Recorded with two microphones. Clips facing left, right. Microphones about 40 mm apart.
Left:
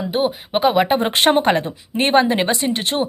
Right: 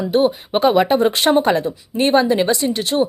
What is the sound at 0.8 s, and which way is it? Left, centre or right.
Speech, left.